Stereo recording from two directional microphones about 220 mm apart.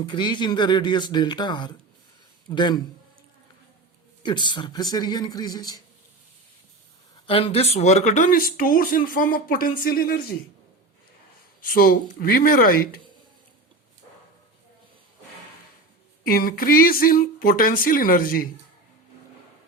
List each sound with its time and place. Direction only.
0.0 s speech: 20° left (ahead or behind)
4.2 s speech: 20° left (ahead or behind)
7.3 s speech: 25° left (ahead or behind); by 10.3 s 40° left (ahead or behind)
11.6 s speech: 40° left (ahead or behind)
16.2 s speech: 40° left (ahead or behind)